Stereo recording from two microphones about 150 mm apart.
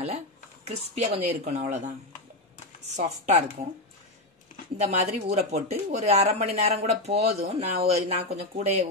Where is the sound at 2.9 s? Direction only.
45° right (ahead or behind).